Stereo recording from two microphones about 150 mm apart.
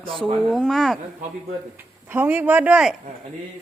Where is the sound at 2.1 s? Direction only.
15° right (ahead or behind).